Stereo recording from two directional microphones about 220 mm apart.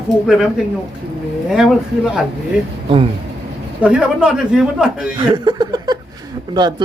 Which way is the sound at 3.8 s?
5° right (ahead or behind).